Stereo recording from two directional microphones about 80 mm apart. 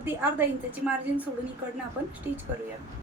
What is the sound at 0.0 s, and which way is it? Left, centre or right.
Speech, right.